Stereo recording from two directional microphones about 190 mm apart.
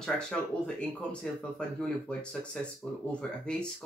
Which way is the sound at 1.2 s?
5° left (ahead or behind).